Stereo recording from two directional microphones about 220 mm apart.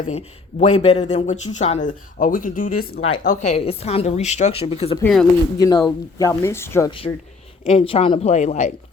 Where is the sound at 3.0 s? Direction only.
25° left (ahead or behind).